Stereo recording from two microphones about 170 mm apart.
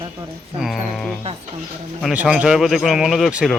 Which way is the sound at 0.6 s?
Centre (ahead or behind).